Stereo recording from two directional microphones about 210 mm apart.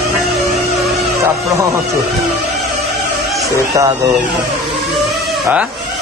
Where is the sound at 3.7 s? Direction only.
15° right (ahead or behind).